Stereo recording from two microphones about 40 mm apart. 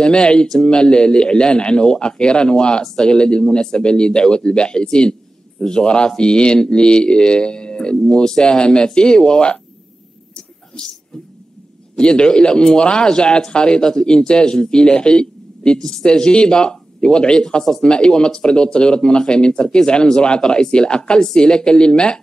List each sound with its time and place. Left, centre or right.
0.0 s speech: left
10.3 s a sound: left
12.0 s speech: left